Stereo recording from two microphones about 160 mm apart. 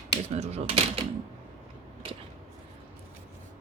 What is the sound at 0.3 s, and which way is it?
Speech, 40° right (ahead or behind).